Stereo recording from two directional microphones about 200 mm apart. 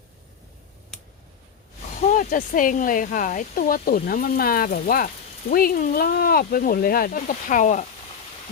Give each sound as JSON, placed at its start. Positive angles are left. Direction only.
{"t": 2.0, "sound": "speech", "side_deg": 40}